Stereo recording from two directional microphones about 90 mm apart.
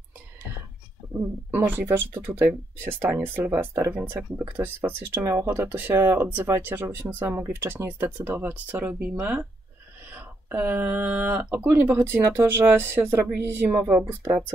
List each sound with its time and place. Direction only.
1.1 s speech: 25° right (ahead or behind)